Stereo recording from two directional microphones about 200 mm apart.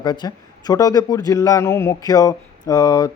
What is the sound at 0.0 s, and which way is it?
A man's voice, 20° left (ahead or behind).